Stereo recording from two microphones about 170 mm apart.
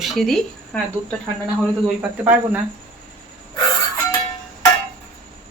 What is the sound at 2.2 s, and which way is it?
Speech, 10° right (ahead or behind).